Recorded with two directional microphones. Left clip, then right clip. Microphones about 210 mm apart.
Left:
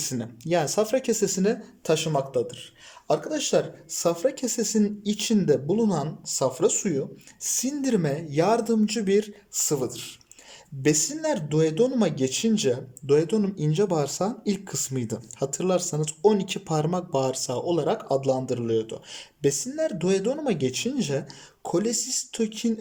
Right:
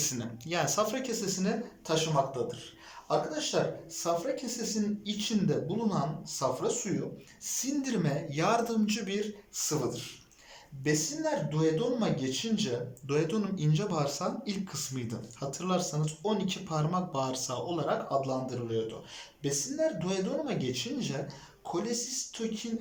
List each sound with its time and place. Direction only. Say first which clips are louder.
0.0 s a man's voice: left 3 dB; 40° left (ahead or behind)